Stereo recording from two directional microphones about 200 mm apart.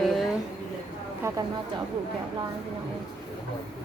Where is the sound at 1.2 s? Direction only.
15° right (ahead or behind).